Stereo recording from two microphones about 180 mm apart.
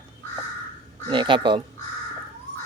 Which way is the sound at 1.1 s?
25° right (ahead or behind).